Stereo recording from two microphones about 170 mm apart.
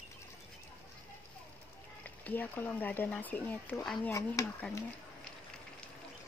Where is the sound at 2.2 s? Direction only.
10° left (ahead or behind).